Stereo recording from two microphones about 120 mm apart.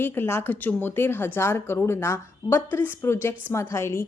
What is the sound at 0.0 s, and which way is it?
Speech, 20° left (ahead or behind).